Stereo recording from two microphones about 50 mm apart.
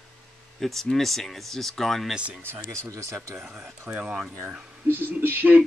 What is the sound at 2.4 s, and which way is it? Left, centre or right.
Speech, right.